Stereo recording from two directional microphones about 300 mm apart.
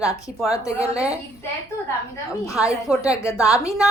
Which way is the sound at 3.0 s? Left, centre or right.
Centre.